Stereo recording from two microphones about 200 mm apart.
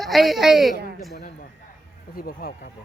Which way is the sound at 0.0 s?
Centre (ahead or behind).